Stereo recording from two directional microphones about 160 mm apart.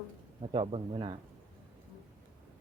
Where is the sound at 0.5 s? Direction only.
35° right (ahead or behind).